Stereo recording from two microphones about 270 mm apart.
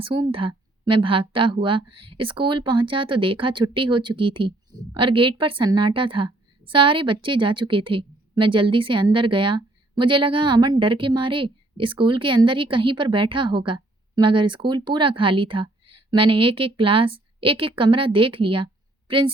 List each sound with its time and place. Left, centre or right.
0.0 s a woman's voice: centre